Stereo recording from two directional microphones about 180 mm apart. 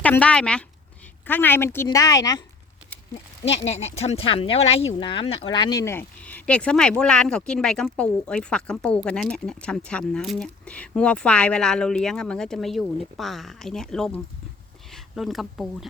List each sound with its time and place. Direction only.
0.0 s speech: 10° left (ahead or behind)
3.6 s speech: 35° left (ahead or behind); by 15.9 s centre (ahead or behind)